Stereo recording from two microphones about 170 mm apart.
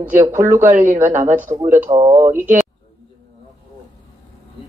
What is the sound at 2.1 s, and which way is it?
Speech, 45° right (ahead or behind).